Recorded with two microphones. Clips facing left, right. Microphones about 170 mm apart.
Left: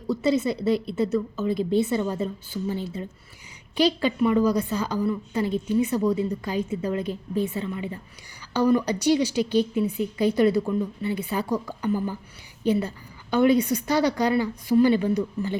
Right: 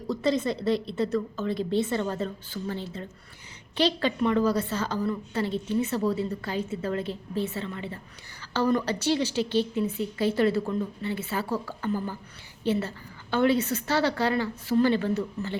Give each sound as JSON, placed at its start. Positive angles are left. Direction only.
{"t": 0.1, "sound": "a woman's voice", "side_deg": 10}